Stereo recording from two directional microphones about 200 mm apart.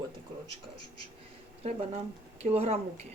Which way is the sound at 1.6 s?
35° right (ahead or behind).